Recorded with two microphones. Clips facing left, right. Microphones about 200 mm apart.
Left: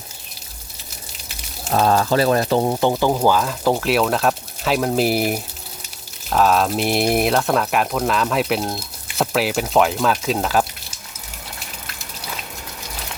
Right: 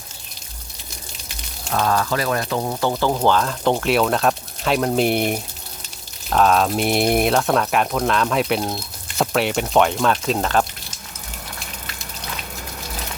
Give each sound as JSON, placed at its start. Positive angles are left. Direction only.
{"t": 1.7, "sound": "speech", "side_deg": 30}
{"t": 2.9, "sound": "speech", "side_deg": 10}